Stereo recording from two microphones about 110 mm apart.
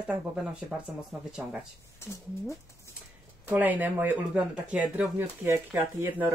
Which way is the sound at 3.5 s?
15° right (ahead or behind).